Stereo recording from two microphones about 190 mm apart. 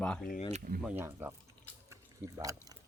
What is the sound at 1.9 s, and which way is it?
Drip, 15° right (ahead or behind).